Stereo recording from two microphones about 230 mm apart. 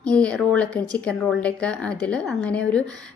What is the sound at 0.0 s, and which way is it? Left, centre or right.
A woman's voice, centre.